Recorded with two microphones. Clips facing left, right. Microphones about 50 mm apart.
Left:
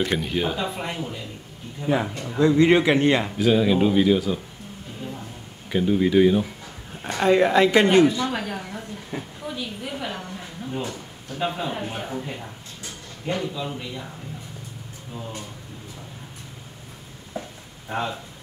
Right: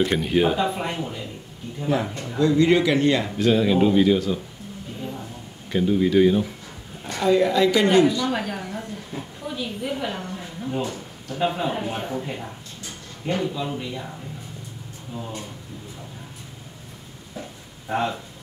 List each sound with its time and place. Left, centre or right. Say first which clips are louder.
0.0 s speech: right 4 dB; centre
2.3 s speech: left 1 dB; left
3.3 s speech: even; centre
5.7 s speech: even; centre
7.0 s a woman's voice: left 1 dB; left
8.3 s speech: right 2 dB; centre
9.1 s a sound: left 3 dB; left
9.5 s a woman's voice: right 4 dB; centre
17.8 s speech: right 3 dB; centre